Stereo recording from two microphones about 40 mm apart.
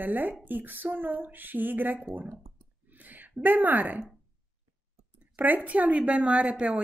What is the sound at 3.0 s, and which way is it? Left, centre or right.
A woman's voice, right.